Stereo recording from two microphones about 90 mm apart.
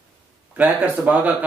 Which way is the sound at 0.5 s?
20° right (ahead or behind).